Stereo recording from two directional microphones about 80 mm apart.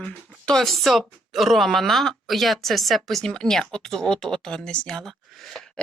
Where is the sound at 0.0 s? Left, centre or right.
Centre.